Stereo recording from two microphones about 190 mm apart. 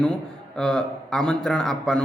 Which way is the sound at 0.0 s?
5° left (ahead or behind).